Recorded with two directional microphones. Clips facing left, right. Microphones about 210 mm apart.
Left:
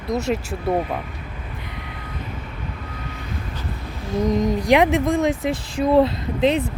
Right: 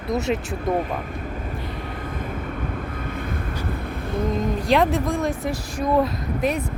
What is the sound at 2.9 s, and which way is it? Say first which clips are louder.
Vehicle: right 4 dB; 55° right (ahead or behind).